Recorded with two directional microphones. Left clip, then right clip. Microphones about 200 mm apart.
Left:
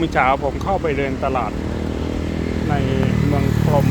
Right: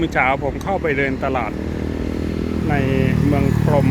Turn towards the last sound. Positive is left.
turn(degrees=-25)  # may be behind; listen again after turning